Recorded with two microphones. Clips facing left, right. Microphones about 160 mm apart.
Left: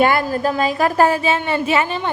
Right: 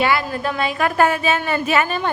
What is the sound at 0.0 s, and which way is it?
Speech, 45° left (ahead or behind).